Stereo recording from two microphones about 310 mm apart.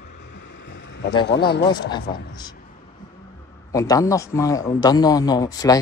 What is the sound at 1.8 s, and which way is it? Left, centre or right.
Speech, centre.